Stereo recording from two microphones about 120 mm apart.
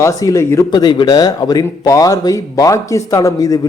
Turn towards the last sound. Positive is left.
turn(degrees=30)  # may be behind; listen again after turning